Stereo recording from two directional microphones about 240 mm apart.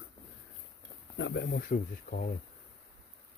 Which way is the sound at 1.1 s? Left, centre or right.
Left.